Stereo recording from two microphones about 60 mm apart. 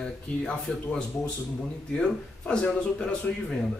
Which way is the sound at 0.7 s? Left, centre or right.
Centre.